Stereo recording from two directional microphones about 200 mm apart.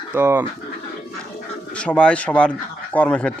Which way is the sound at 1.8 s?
5° left (ahead or behind).